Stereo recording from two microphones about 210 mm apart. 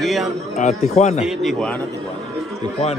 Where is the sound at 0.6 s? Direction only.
35° left (ahead or behind).